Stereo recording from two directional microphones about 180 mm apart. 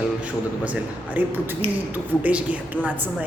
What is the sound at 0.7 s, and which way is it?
A woman's voice, 10° right (ahead or behind).